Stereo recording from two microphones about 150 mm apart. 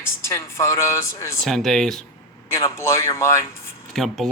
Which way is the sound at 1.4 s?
Centre (ahead or behind).